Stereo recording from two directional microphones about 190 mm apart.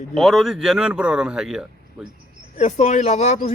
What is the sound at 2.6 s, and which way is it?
Speech, 40° left (ahead or behind).